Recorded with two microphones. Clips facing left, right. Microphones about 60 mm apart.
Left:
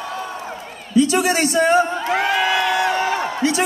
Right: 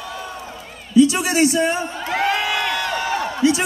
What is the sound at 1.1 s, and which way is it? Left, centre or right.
Speech, left.